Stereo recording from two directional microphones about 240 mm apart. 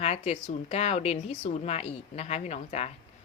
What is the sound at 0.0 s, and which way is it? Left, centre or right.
Speech, left.